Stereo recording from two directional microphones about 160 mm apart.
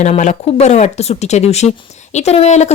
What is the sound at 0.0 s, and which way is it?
Speech, 45° left (ahead or behind).